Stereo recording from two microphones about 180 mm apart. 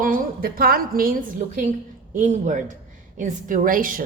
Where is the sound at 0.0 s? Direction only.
50° right (ahead or behind).